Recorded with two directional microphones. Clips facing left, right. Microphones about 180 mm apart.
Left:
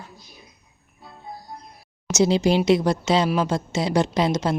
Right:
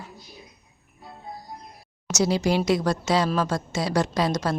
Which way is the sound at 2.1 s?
25° left (ahead or behind).